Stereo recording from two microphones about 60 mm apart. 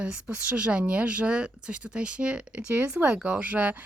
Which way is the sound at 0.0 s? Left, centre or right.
Right.